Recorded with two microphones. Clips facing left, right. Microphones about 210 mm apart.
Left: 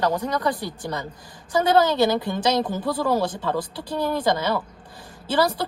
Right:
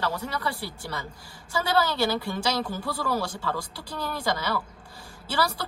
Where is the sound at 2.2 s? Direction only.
20° left (ahead or behind).